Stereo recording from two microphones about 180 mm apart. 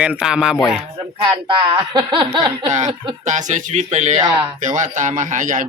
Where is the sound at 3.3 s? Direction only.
40° right (ahead or behind).